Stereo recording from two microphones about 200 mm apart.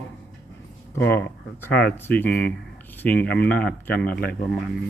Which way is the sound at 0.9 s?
10° left (ahead or behind).